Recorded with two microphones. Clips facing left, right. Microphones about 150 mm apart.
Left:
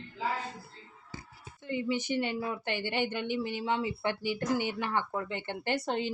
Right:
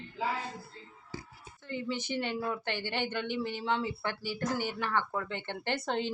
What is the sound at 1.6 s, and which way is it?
Speech, 15° left (ahead or behind).